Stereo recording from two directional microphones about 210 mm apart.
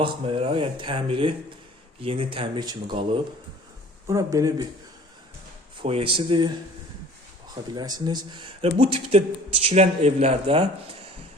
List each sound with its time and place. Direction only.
0.0 s speech: 25° right (ahead or behind)
4.0 s speech: 15° right (ahead or behind)
5.8 s speech: 25° right (ahead or behind)